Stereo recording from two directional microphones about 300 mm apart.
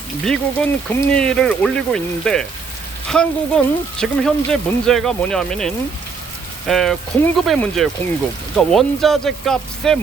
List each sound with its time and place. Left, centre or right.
0.3 s speech: centre